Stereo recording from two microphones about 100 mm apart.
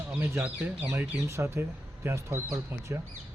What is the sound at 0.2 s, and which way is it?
Speech, 20° right (ahead or behind).